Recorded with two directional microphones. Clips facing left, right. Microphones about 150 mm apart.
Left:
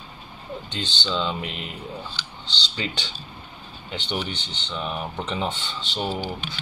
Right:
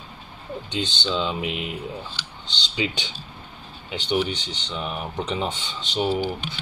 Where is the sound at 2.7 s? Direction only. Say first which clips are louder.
Right 5 dB; 10° right (ahead or behind).